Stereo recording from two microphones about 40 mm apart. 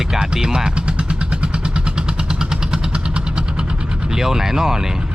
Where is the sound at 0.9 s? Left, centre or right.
Right.